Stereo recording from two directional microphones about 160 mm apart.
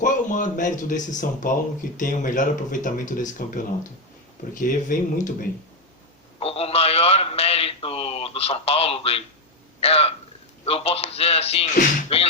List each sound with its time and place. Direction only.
0.0 s speech: 55° left (ahead or behind)
6.4 s a sound: 40° left (ahead or behind)
9.8 s speech: 40° left (ahead or behind)